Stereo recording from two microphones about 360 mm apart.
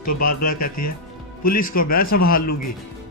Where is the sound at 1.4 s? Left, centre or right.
Left.